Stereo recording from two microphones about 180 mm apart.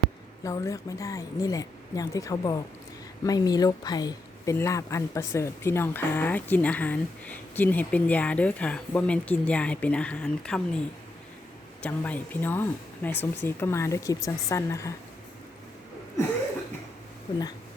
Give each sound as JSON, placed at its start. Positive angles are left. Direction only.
{"t": 0.4, "sound": "speech", "side_deg": 20}
{"t": 11.8, "sound": "speech", "side_deg": 10}